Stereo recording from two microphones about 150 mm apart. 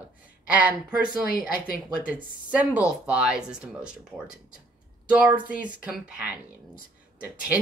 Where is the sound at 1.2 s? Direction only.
75° left (ahead or behind).